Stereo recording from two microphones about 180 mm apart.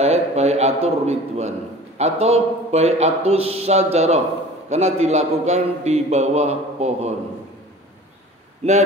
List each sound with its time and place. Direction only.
0.0 s a man's voice: 35° right (ahead or behind)